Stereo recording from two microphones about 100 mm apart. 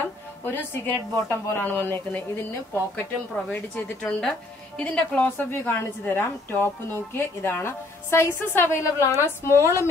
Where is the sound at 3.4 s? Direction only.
15° left (ahead or behind).